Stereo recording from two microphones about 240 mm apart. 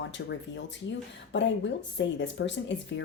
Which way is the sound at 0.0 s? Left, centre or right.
Left.